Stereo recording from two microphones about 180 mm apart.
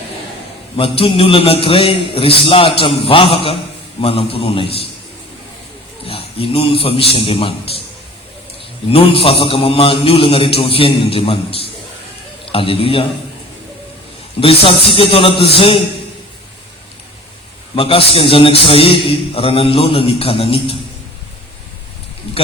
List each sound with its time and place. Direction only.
0.8 s a man's voice: 30° left (ahead or behind)
6.1 s a man's voice: 30° left (ahead or behind)
8.9 s a man's voice: 30° left (ahead or behind)
14.4 s a man's voice: 30° left (ahead or behind)
17.7 s a man's voice: 30° left (ahead or behind)